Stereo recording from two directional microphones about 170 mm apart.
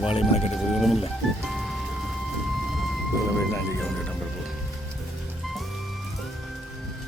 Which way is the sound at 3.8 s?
5° left (ahead or behind).